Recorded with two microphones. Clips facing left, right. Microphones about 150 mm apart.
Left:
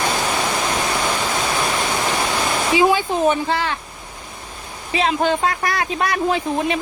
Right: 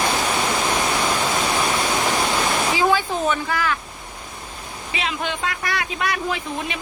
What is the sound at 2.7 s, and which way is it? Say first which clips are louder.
Speech: left 6 dB; 20° left (ahead or behind).